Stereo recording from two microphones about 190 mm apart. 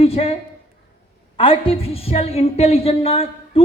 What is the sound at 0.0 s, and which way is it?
Speech, 30° left (ahead or behind).